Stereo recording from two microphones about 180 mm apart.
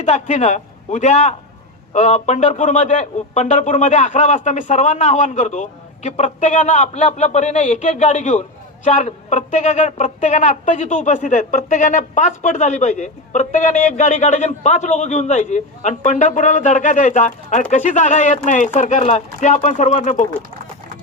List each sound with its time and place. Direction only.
0.0 s a man's voice: 40° left (ahead or behind)